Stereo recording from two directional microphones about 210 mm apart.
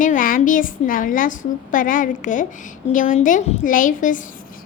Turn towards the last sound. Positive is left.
turn(degrees=40)  # may be behind; listen again after turning